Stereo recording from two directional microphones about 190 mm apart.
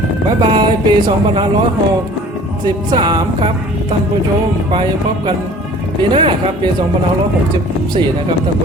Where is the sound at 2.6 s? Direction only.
25° right (ahead or behind).